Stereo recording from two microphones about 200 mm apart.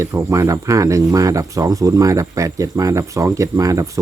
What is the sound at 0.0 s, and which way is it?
Speech, 15° right (ahead or behind).